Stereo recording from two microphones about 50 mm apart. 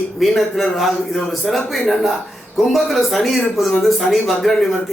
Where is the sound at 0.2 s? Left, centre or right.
Centre.